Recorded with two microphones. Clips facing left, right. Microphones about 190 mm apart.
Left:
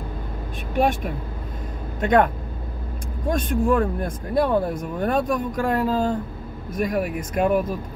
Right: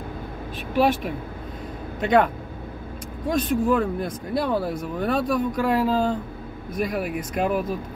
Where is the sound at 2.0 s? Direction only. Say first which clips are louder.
Left 1 dB; 45° left (ahead or behind).